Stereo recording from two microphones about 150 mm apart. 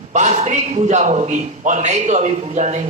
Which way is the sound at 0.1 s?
50° right (ahead or behind).